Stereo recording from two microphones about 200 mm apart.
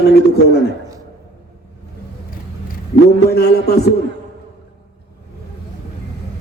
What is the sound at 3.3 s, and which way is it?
Speech, 55° left (ahead or behind).